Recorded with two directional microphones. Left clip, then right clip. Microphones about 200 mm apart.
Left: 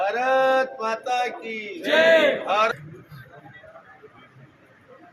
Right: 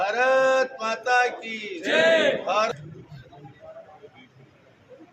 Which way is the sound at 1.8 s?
15° right (ahead or behind).